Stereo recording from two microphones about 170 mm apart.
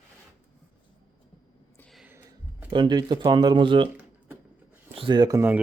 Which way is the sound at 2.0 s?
10° right (ahead or behind).